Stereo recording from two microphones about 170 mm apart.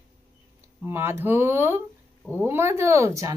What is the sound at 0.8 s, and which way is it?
Speech, 15° right (ahead or behind).